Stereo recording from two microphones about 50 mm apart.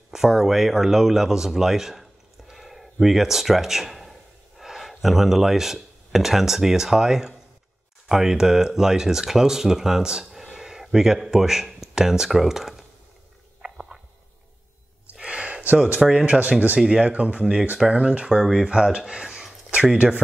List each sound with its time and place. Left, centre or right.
0.1 s speech: centre
13.6 s stomach rumble: centre
15.2 s a sound: right
15.7 s speech: right